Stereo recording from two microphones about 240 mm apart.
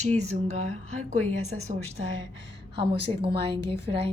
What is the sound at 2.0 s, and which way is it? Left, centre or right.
A woman's voice, right.